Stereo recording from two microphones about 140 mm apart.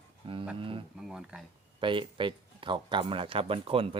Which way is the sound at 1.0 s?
5° right (ahead or behind).